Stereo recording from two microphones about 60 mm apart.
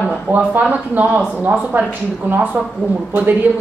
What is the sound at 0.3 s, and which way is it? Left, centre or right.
A woman's voice, right.